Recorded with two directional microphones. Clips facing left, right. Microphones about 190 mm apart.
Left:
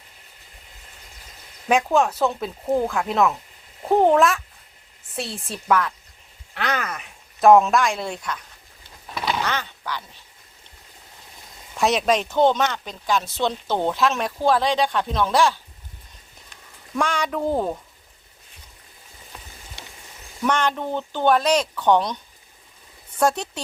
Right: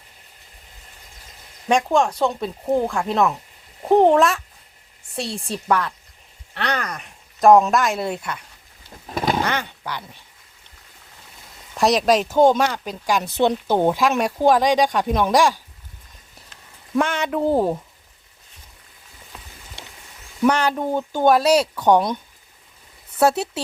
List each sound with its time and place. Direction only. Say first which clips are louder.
1.6 s speech: right 1 dB; 5° left (ahead or behind)
9.1 s a sound: right 4 dB; 45° right (ahead or behind)
9.4 s speech: right 3 dB; 10° right (ahead or behind)
11.8 s speech: right 3 dB; centre (ahead or behind)
17.0 s speech: right 3 dB; 5° right (ahead or behind)
20.7 s speech: right 3 dB; 10° right (ahead or behind)